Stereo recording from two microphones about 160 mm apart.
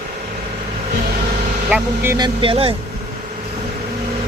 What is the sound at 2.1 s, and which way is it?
Speech, 30° right (ahead or behind).